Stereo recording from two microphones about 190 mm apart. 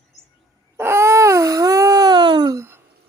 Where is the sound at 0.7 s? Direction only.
15° right (ahead or behind).